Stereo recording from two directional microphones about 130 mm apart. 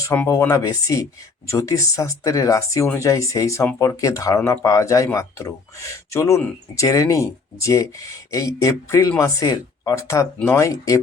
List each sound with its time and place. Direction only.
0.1 s speech: 20° left (ahead or behind)